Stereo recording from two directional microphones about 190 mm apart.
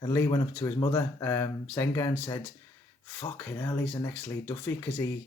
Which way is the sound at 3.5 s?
10° left (ahead or behind).